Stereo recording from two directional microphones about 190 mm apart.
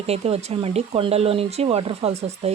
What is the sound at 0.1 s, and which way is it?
Speech, 30° right (ahead or behind).